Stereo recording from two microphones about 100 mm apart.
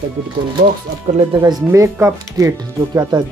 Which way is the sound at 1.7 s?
30° right (ahead or behind).